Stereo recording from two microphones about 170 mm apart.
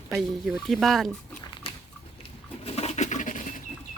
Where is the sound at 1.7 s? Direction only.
30° left (ahead or behind).